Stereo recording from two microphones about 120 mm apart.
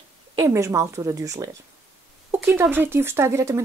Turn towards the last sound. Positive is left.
turn(degrees=-25)  # may be behind; listen again after turning